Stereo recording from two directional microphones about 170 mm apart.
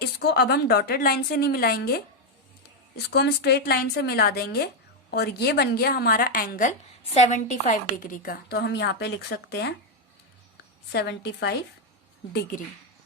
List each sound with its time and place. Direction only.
0.0 s a woman's voice: 70° left (ahead or behind)
7.0 s a woman's voice: 40° left (ahead or behind); by 9.7 s 75° left (ahead or behind)
10.9 s a woman's voice: 80° left
12.3 s a woman's voice: 65° left (ahead or behind)